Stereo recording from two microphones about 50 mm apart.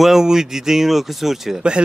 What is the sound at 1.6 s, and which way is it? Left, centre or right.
Speech, centre.